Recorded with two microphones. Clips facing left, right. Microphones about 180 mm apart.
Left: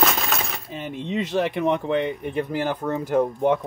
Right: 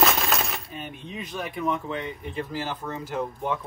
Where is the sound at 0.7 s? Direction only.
90° left; by 3.5 s 55° left (ahead or behind).